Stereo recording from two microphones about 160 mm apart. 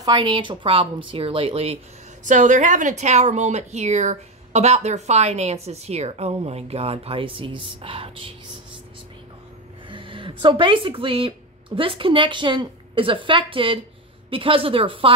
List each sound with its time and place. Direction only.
0.0 s speech: 30° right (ahead or behind)
2.2 s speech: 50° right (ahead or behind); by 8.3 s 35° right (ahead or behind)
9.8 s speech: 30° right (ahead or behind)